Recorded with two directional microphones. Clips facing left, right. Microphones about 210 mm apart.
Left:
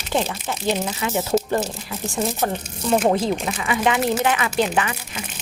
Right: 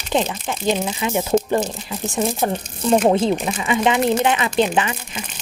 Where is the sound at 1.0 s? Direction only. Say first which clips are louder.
Right 3 dB; 15° right (ahead or behind).